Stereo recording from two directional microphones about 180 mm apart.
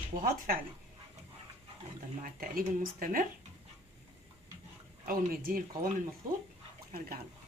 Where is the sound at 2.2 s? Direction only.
50° right (ahead or behind).